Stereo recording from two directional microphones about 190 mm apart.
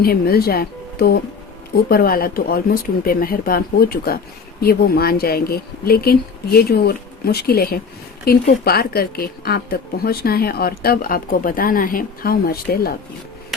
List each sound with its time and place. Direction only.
0.0 s speech: 50° left (ahead or behind)